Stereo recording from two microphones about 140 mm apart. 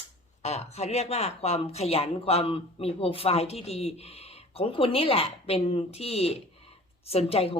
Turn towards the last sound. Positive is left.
turn(degrees=45)  # may be behind; listen again after turning